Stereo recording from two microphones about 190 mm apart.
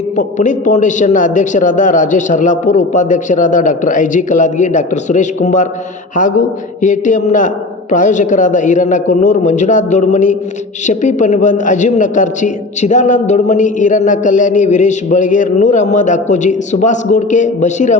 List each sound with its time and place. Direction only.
0.2 s a man's voice: 40° left (ahead or behind)
6.8 s a man's voice: 40° left (ahead or behind)